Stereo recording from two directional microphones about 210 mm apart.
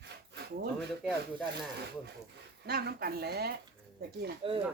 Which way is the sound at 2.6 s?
50° right (ahead or behind).